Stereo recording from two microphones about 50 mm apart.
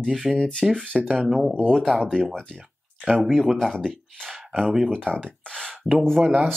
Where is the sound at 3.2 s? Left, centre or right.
Centre.